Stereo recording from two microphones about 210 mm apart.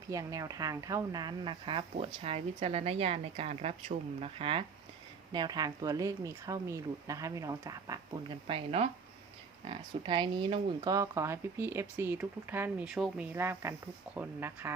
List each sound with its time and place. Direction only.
0.1 s speech: 15° right (ahead or behind)